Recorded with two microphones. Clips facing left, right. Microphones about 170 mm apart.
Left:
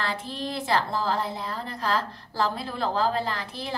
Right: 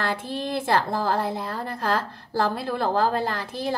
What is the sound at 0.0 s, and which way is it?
A woman's voice, 50° right (ahead or behind).